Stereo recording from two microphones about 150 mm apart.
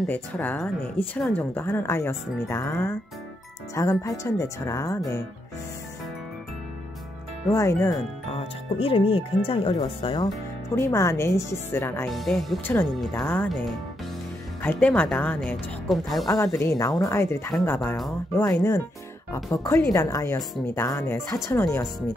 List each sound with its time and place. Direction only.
0.0 s speech: 10° left (ahead or behind)
7.5 s speech: 20° left (ahead or behind)
8.4 s speech: 40° left (ahead or behind)
10.8 s speech: 20° left (ahead or behind)
12.1 s speech: centre (ahead or behind)
13.2 s speech: 10° left (ahead or behind)
14.6 s speech: 10° left (ahead or behind)
16.5 s speech: 20° left (ahead or behind)